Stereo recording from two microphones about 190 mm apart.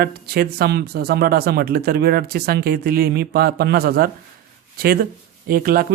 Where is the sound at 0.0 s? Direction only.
55° right (ahead or behind).